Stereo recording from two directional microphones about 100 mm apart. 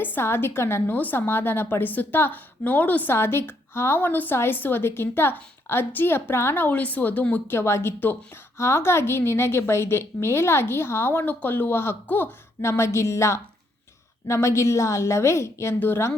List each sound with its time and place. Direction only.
0.0 s a woman's voice: 20° left (ahead or behind)